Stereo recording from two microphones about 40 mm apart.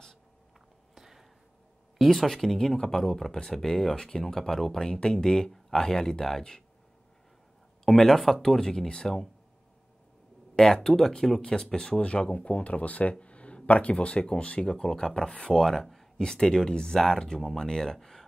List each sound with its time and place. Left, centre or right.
0.9 s a sound: centre
2.0 s speech: centre
7.8 s speech: centre
10.5 s speech: centre
15.5 s speech: centre